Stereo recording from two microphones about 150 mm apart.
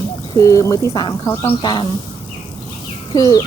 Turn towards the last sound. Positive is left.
turn(degrees=25)  # may be behind; listen again after turning